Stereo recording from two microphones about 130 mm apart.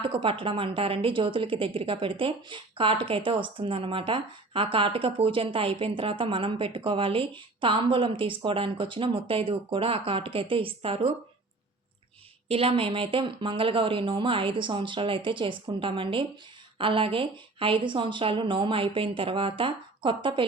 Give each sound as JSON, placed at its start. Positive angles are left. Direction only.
{"t": 0.0, "sound": "a woman's voice", "side_deg": -40}
{"t": 12.5, "sound": "speech", "side_deg": -50}